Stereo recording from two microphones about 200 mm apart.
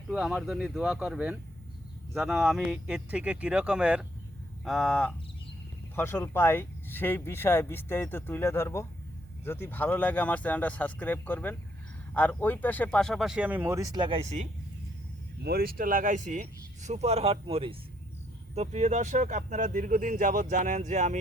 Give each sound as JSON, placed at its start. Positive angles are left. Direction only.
{"t": 0.1, "sound": "speech", "side_deg": -5}
{"t": 15.4, "sound": "speech", "side_deg": -50}